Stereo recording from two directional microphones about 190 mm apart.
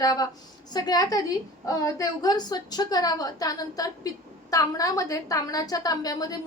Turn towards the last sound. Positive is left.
turn(degrees=20)  # may be behind; listen again after turning